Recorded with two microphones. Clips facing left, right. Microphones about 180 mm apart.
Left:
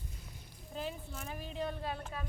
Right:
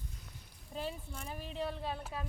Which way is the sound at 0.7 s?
5° left (ahead or behind).